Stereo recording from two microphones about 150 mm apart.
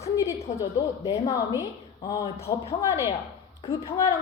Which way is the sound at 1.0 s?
25° left (ahead or behind).